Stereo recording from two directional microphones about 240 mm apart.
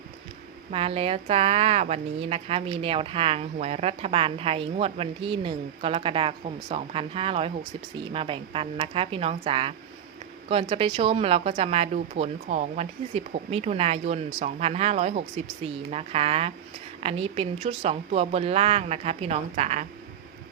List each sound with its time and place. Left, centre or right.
0.7 s a woman's voice: right